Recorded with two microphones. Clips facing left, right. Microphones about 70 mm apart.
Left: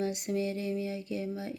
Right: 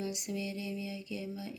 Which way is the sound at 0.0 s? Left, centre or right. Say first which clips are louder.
Left 6 dB; left.